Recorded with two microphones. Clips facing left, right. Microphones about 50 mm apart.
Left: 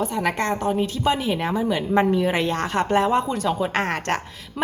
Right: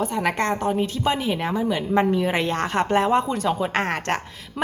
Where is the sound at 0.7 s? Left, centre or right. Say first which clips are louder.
Left 1 dB; right.